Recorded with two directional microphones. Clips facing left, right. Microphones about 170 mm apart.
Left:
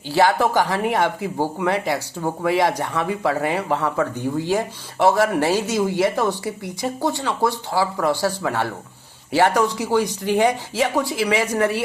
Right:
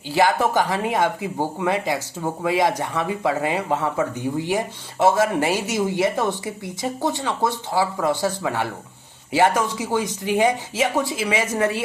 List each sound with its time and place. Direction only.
0.1 s a woman's voice: 20° right (ahead or behind)